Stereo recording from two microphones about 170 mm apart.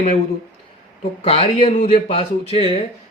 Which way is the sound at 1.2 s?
35° left (ahead or behind).